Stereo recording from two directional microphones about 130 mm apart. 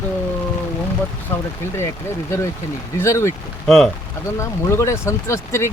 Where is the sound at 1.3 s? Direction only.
20° left (ahead or behind).